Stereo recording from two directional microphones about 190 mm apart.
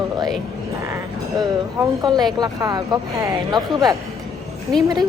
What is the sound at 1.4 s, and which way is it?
Speech, 20° right (ahead or behind).